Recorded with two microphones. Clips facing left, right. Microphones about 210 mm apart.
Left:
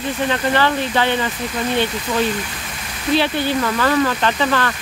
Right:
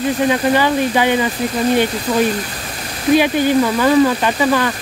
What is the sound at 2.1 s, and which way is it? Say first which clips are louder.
Speech: right 4 dB; 35° right (ahead or behind).